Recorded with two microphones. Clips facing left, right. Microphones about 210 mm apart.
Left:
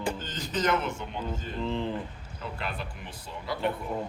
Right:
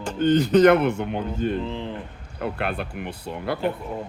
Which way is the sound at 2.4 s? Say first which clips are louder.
Right 9 dB; 60° right (ahead or behind).